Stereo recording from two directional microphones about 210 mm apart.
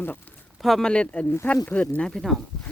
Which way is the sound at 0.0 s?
10° left (ahead or behind).